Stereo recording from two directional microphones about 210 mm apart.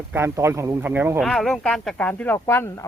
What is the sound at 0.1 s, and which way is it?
A man's voice, 10° right (ahead or behind).